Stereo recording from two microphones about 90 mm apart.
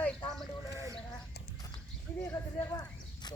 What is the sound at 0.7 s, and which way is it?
Speech, 35° right (ahead or behind).